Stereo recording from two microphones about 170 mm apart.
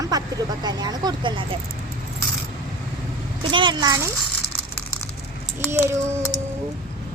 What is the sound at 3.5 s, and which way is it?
Speech, 30° right (ahead or behind).